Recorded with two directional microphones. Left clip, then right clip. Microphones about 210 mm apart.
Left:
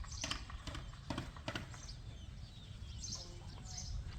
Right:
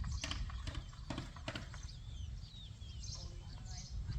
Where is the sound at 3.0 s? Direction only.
45° left (ahead or behind).